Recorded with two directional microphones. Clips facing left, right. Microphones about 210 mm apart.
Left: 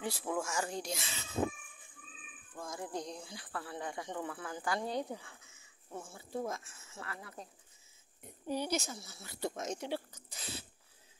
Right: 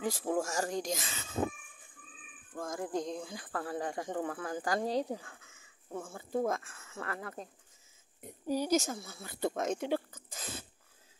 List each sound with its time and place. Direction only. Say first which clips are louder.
0.0 s speech: right 4 dB; 45° right (ahead or behind)
2.5 s speech: right 5 dB; 50° right (ahead or behind)
8.5 s speech: right 6 dB; 40° right (ahead or behind)